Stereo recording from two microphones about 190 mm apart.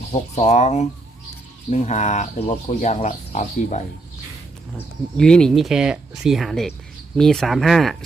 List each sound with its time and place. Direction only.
0.1 s speech: 35° left (ahead or behind)
5.1 s speech: 5° left (ahead or behind)